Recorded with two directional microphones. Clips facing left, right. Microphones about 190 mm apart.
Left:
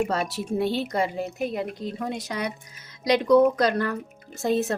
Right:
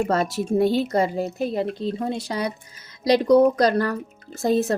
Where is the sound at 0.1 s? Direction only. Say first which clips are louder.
Right 5 dB; 45° right (ahead or behind).